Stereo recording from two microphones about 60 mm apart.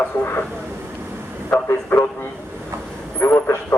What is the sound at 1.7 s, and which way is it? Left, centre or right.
Speech, left.